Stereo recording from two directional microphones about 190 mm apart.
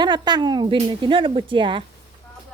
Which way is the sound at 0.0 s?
25° right (ahead or behind).